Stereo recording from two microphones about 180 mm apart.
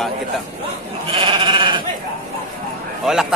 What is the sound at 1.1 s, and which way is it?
Goat, 30° right (ahead or behind).